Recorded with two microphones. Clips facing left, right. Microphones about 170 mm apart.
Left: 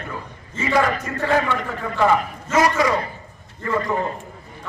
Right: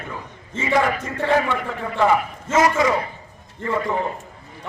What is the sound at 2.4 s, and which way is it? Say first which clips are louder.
Speech: right 1 dB; 25° right (ahead or behind).